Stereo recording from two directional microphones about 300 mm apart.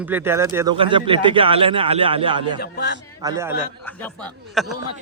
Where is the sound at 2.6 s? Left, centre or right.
Left.